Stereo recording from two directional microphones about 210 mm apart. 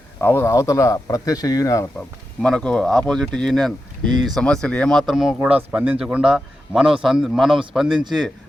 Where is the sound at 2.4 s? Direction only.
5° left (ahead or behind).